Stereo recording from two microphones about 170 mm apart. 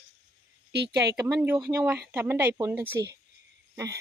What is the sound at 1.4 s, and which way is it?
Speech, 15° right (ahead or behind).